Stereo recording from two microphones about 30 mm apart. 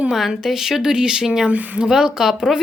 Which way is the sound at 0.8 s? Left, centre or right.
Right.